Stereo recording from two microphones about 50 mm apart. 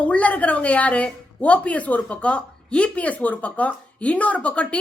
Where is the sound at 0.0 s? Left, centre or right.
Left.